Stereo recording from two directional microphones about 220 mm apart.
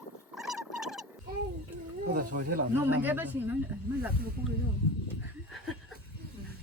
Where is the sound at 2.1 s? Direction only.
35° right (ahead or behind).